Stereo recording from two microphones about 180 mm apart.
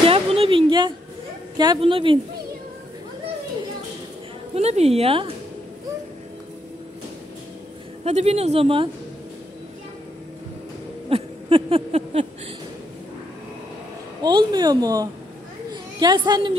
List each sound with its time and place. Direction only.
0.0 s a sound: 30° right (ahead or behind)
1.6 s speech: 25° right (ahead or behind)
4.6 s speech: 35° right (ahead or behind)
8.0 s speech: 35° right (ahead or behind)
11.1 s a sound: 30° right (ahead or behind)
14.2 s a woman's voice: 25° right (ahead or behind)